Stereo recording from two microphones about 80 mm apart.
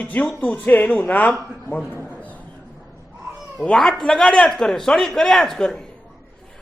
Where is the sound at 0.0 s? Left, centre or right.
Centre.